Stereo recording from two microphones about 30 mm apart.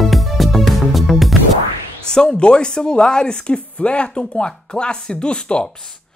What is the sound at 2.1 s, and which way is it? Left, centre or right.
Speech, left.